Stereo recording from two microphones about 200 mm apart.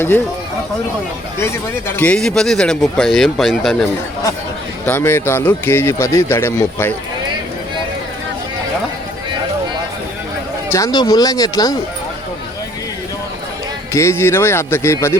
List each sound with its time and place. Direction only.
1.9 s speech: 10° left (ahead or behind)
4.9 s speech: 10° left (ahead or behind)
10.7 s speech: 15° left (ahead or behind)
13.9 s speech: 15° left (ahead or behind)